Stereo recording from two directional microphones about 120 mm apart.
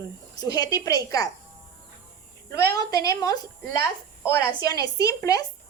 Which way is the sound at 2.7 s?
30° left (ahead or behind).